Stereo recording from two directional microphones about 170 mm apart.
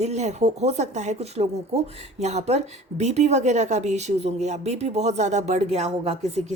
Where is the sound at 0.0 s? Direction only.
40° right (ahead or behind).